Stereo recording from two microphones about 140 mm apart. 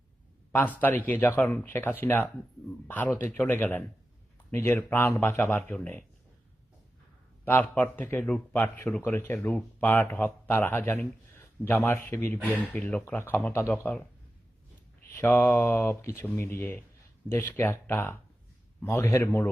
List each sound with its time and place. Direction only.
0.5 s speech: 10° left (ahead or behind)
7.4 s speech: 10° left (ahead or behind)
15.1 s speech: 15° left (ahead or behind)